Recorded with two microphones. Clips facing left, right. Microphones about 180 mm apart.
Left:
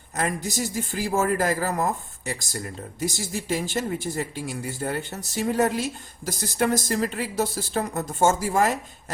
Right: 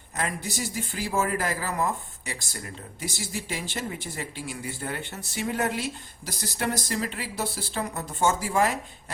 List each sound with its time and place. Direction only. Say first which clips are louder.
0.2 s speech: left 4 dB; 45° left (ahead or behind)